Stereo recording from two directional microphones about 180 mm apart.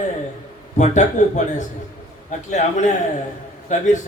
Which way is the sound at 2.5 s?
40° left (ahead or behind).